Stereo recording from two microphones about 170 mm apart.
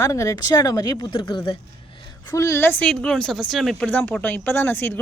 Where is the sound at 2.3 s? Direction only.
20° left (ahead or behind).